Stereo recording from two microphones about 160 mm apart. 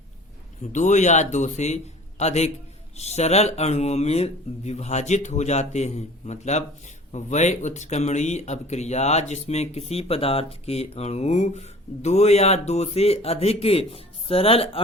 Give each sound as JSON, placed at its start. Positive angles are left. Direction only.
{"t": 0.6, "sound": "speech", "side_deg": 50}